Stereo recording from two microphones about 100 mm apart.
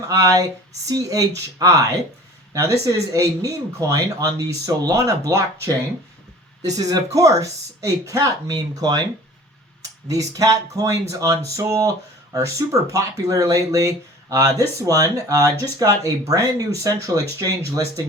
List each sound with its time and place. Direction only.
0.1 s speech: 35° right (ahead or behind)
10.1 s speech: 35° right (ahead or behind)